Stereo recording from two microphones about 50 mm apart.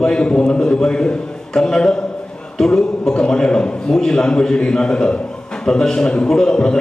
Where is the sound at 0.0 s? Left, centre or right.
Centre.